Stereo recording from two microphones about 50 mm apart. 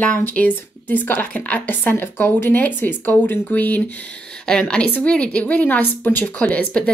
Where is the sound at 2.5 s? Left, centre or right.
Left.